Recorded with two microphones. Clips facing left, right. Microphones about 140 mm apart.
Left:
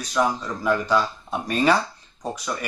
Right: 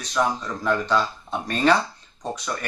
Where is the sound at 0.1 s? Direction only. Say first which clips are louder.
Left 1 dB; 10° left (ahead or behind).